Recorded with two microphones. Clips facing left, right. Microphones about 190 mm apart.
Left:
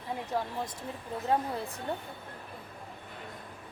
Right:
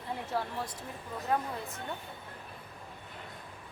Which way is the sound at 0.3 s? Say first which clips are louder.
Left 1 dB; 15° left (ahead or behind).